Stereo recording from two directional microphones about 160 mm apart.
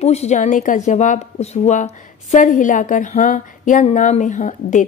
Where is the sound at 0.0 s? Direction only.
40° left (ahead or behind).